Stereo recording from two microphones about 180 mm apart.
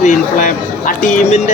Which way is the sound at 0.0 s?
45° left (ahead or behind).